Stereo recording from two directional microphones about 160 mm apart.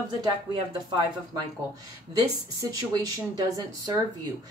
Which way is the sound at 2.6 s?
25° right (ahead or behind).